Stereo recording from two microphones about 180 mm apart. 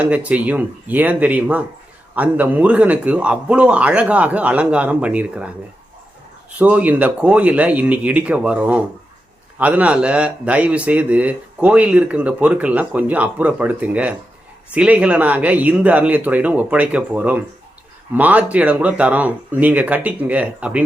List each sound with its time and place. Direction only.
0.0 s speech: 10° right (ahead or behind)
6.6 s speech: 10° right (ahead or behind)